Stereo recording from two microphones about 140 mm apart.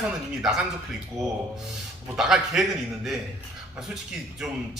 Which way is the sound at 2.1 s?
5° right (ahead or behind).